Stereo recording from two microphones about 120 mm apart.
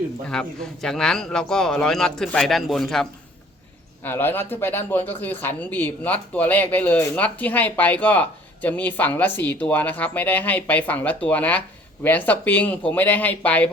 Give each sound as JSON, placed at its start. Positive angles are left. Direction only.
{"t": 0.3, "sound": "a man's voice", "side_deg": 5}
{"t": 4.0, "sound": "speech", "side_deg": 15}